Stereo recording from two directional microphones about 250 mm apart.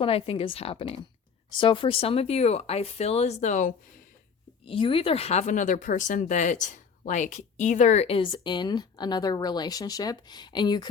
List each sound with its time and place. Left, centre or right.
0.0 s speech: left